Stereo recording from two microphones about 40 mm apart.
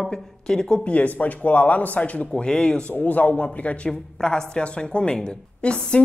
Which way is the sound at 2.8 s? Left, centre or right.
Left.